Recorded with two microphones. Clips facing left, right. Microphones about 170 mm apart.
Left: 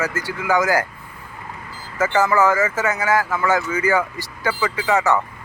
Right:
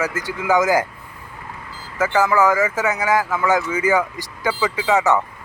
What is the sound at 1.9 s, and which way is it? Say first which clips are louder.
Speech: even; 10° right (ahead or behind).